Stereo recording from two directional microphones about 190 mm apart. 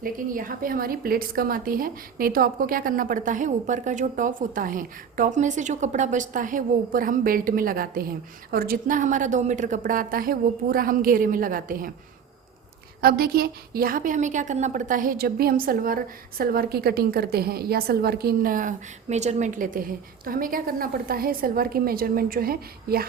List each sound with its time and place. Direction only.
0.0 s a woman's voice: 45° right (ahead or behind)
13.0 s a woman's voice: 55° right (ahead or behind)